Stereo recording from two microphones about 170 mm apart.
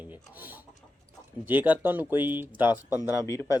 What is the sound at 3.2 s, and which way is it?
Speech, 20° left (ahead or behind).